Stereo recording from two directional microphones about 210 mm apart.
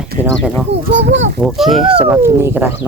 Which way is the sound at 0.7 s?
55° right (ahead or behind).